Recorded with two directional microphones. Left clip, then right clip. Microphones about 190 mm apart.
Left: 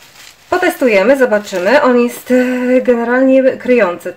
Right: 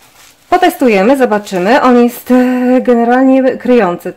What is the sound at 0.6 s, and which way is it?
Speech, 45° right (ahead or behind).